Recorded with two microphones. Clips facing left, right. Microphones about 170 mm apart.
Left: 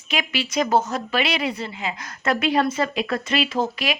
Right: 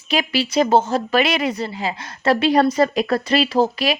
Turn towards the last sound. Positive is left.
turn(degrees=-35)  # may be behind; listen again after turning